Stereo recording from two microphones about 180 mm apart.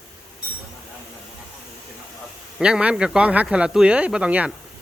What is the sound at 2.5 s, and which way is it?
Speech, 5° right (ahead or behind).